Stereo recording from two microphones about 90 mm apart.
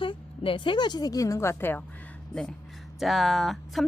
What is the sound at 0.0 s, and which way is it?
A woman's voice, 65° left (ahead or behind).